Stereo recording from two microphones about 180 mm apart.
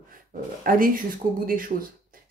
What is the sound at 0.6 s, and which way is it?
Speech, 50° right (ahead or behind).